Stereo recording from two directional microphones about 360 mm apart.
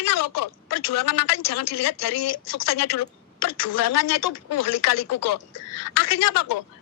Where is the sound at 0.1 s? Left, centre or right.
Left.